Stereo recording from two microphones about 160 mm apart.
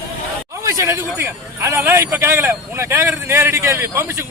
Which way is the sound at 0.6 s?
20° right (ahead or behind).